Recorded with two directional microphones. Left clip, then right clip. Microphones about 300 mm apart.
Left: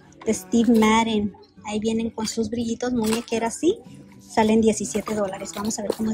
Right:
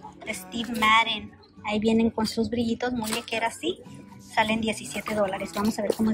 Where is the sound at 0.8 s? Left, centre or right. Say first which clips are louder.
Right 4 dB; centre.